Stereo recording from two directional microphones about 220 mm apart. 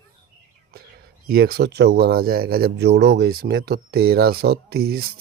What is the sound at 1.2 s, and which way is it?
Speech, 45° right (ahead or behind).